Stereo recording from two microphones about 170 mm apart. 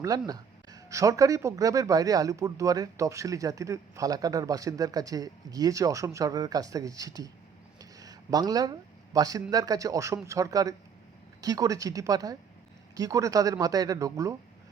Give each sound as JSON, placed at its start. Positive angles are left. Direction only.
{"t": 0.0, "sound": "speech", "side_deg": -20}
{"t": 7.8, "sound": "a sound", "side_deg": -20}
{"t": 9.1, "sound": "speech", "side_deg": -20}